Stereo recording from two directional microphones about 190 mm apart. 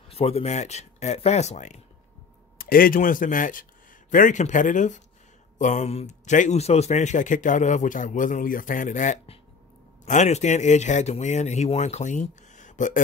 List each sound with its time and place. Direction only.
0.1 s a man's voice: 35° left (ahead or behind)
2.6 s a man's voice: 50° left (ahead or behind)